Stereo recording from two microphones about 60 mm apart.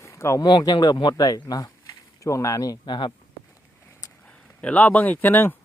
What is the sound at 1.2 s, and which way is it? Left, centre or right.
Speech, left.